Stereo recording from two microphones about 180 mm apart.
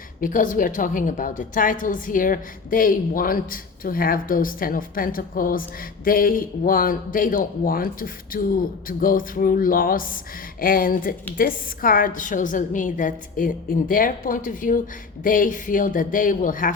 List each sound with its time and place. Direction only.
0.2 s a woman's voice: 45° left (ahead or behind)